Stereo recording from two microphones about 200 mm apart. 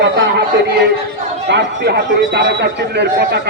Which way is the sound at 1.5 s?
60° right (ahead or behind).